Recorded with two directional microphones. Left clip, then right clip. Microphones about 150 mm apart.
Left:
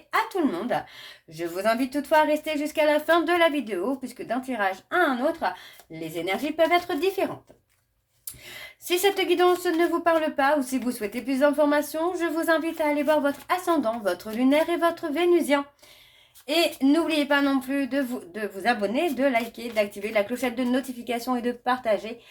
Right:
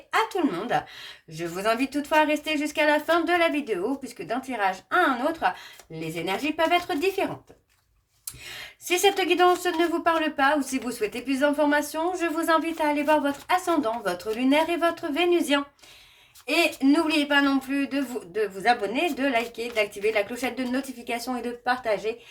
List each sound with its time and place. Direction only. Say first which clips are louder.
0.1 s a sound: even; 25° left (ahead or behind)
1.4 s speech: left 1 dB; 25° left (ahead or behind)
6.2 s speech: left 1 dB; 30° left (ahead or behind)
8.9 s speech: right 1 dB; 30° left (ahead or behind)
16.8 s speech: even; 25° left (ahead or behind)